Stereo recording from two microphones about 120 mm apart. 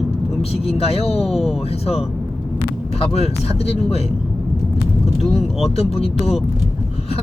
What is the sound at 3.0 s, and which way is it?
Speech, 55° left (ahead or behind).